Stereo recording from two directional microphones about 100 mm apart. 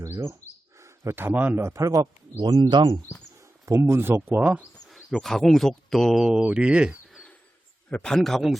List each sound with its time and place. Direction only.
0.0 s bird: 30° right (ahead or behind)
0.8 s a man's voice: 30° right (ahead or behind)
2.4 s speech: 45° right (ahead or behind)
3.7 s speech: 25° right (ahead or behind)
5.1 s speech: centre (ahead or behind)
7.9 s speech: 10° left (ahead or behind)